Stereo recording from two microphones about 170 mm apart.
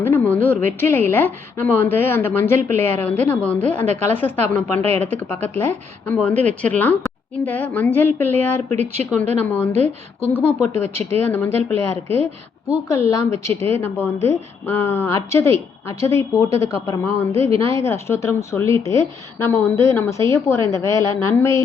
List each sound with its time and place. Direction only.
0.0 s a sound: 10° left (ahead or behind)
0.6 s a woman's voice: 15° left (ahead or behind)
10.2 s speech: 35° left (ahead or behind)
10.8 s a woman's voice: 15° left (ahead or behind)